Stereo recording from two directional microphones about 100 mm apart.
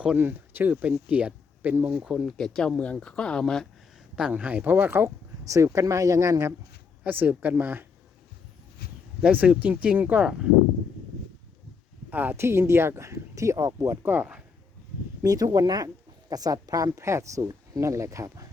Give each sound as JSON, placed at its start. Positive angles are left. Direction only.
{"t": 0.2, "sound": "speech", "side_deg": -20}
{"t": 2.0, "sound": "speech", "side_deg": 0}
{"t": 4.1, "sound": "speech", "side_deg": -10}
{"t": 5.5, "sound": "speech", "side_deg": -30}
{"t": 7.0, "sound": "speech", "side_deg": -20}
{"t": 9.2, "sound": "speech", "side_deg": -15}
{"t": 12.1, "sound": "speech", "side_deg": -20}
{"t": 14.1, "sound": "speech", "side_deg": -15}
{"t": 15.2, "sound": "speech", "side_deg": -35}